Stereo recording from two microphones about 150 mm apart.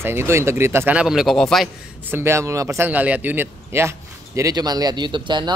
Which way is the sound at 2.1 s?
15° right (ahead or behind).